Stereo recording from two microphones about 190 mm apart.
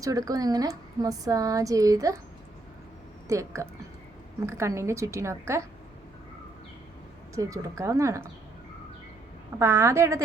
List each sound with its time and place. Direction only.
0.0 s a woman's voice: 20° right (ahead or behind)
3.2 s a woman's voice: 15° right (ahead or behind)
7.3 s a woman's voice: 15° right (ahead or behind)
9.6 s a woman's voice: 15° right (ahead or behind)